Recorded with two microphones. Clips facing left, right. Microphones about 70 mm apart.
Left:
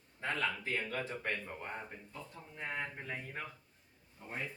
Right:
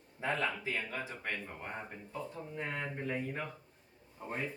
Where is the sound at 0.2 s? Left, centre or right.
Right.